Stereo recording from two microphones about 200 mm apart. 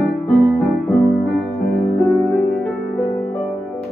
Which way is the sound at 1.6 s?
Centre (ahead or behind).